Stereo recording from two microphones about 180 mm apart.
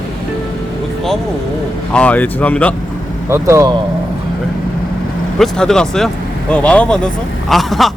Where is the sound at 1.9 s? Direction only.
5° left (ahead or behind).